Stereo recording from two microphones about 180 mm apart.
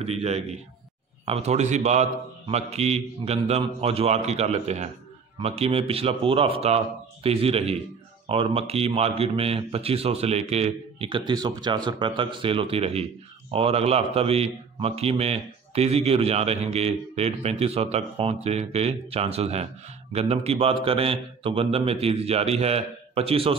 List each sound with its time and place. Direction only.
0.0 s a man's voice: 35° right (ahead or behind)